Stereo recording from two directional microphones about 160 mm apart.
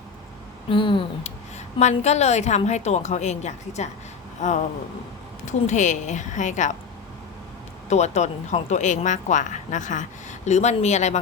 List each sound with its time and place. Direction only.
0.7 s speech: 30° left (ahead or behind)
1.8 s speech: 45° left (ahead or behind)
4.4 s a sound: 50° left (ahead or behind)
5.5 s speech: 50° left (ahead or behind)
7.9 s speech: 45° left (ahead or behind)